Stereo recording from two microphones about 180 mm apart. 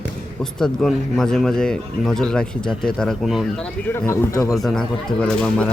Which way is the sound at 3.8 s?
15° left (ahead or behind).